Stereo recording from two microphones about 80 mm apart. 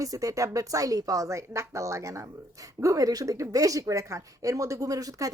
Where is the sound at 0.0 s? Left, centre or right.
Right.